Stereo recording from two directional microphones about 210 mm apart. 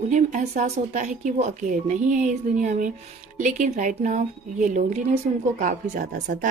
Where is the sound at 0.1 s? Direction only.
35° right (ahead or behind).